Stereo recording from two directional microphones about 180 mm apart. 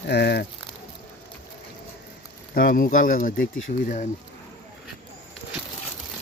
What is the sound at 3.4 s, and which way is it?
Speech, 90° left.